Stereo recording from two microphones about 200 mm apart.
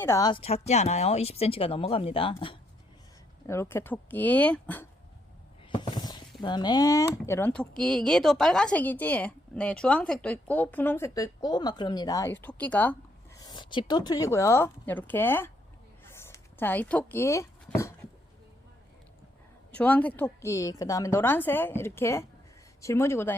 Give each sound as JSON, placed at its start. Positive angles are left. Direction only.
{"t": 0.0, "sound": "speech", "side_deg": 15}
{"t": 3.4, "sound": "speech", "side_deg": 15}
{"t": 5.7, "sound": "a sound", "side_deg": 20}
{"t": 6.4, "sound": "speech", "side_deg": 20}
{"t": 16.0, "sound": "a sound", "side_deg": 10}
{"t": 19.7, "sound": "speech", "side_deg": 5}